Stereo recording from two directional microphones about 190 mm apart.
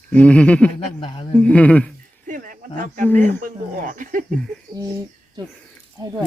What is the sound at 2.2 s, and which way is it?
Speech, 45° right (ahead or behind).